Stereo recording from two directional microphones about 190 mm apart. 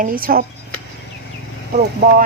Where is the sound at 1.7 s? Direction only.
45° right (ahead or behind).